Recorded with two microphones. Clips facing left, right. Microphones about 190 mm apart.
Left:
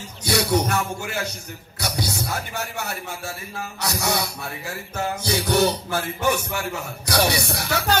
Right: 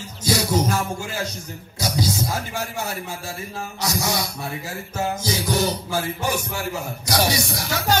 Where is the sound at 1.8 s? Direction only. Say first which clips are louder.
Right 4 dB; 65° left (ahead or behind).